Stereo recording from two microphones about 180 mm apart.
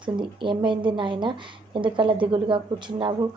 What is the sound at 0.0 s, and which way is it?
A woman's voice, 25° right (ahead or behind).